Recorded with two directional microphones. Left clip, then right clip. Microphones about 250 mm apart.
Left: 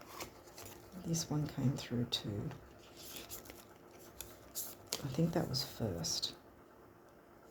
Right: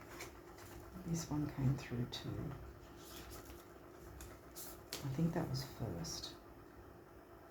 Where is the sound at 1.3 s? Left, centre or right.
Left.